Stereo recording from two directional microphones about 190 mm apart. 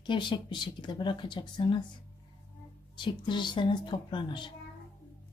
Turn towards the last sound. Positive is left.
turn(degrees=25)  # may be behind; listen again after turning